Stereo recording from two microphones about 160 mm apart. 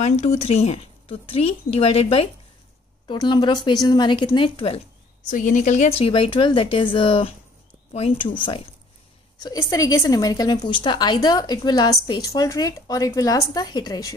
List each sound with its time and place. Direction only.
0.0 s a woman's voice: 45° left (ahead or behind)
5.3 s a woman's voice: 50° left (ahead or behind); by 14.1 s 25° left (ahead or behind)